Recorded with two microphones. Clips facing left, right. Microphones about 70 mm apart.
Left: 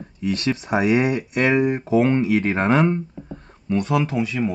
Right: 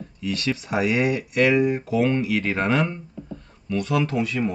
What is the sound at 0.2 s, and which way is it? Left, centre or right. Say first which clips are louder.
Speech: left 3 dB; left.